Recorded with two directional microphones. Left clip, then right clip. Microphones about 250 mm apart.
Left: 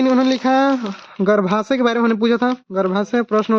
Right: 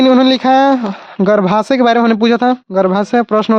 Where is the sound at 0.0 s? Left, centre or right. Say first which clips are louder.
Right 7 dB; right.